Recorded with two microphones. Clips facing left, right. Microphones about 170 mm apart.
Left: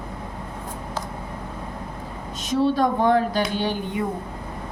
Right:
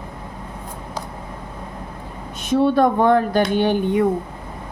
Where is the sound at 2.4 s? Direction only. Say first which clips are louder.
Right 4 dB; 60° right (ahead or behind).